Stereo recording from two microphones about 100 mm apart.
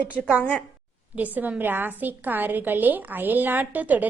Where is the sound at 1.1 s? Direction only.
15° right (ahead or behind).